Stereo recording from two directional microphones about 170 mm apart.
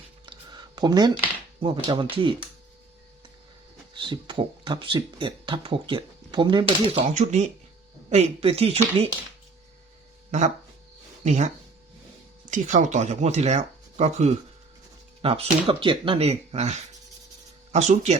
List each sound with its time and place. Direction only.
0.3 s a sound: 25° right (ahead or behind)
1.6 s speech: 30° right (ahead or behind)
3.9 s speech: 30° right (ahead or behind)
7.1 s speech: 45° right (ahead or behind)
11.2 s speech: 45° right (ahead or behind)